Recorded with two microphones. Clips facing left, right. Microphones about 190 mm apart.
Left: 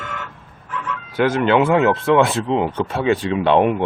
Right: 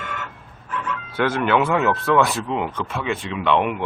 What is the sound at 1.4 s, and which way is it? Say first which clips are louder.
Speech: left 4 dB; 25° left (ahead or behind).